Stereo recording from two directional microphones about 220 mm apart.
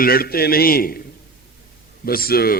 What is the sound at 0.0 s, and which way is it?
A man's voice, 45° left (ahead or behind).